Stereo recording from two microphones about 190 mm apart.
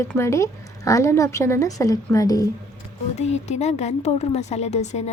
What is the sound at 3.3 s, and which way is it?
A woman's voice, 35° left (ahead or behind).